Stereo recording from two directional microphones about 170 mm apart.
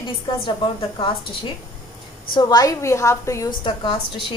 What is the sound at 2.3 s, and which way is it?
A woman's voice, 25° left (ahead or behind).